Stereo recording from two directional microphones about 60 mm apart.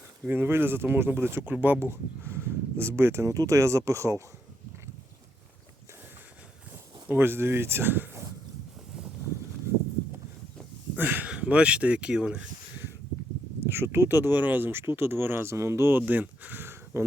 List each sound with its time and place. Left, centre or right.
0.3 s speech: right
3.3 s speech: right
7.1 s speech: right
10.9 s a sound: right
11.3 s speech: centre
13.6 s speech: right
14.3 s speech: right
15.5 s speech: right
15.9 s speech: right